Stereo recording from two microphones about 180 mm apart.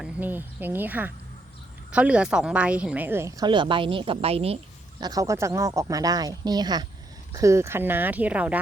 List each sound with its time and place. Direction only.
0.0 s a woman's voice: 10° right (ahead or behind)